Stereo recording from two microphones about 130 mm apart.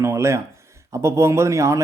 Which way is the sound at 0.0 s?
20° right (ahead or behind).